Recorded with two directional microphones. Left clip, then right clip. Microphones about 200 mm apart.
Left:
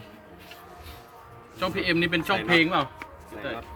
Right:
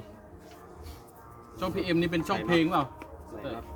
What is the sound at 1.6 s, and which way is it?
Speech, 30° right (ahead or behind).